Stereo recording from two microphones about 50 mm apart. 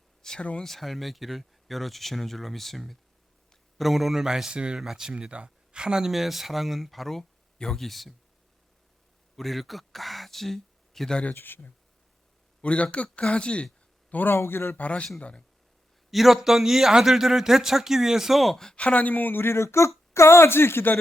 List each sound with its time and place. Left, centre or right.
0.2 s a sound: centre
0.6 s a man's voice: centre
9.3 s speech: centre
11.3 s speech: left
12.6 s speech: left
14.1 s a man's voice: left
14.3 s speech: left
14.8 s speech: left
16.1 s a man's voice: centre
18.6 s speech: centre
18.9 s speech: left
19.4 s speech: left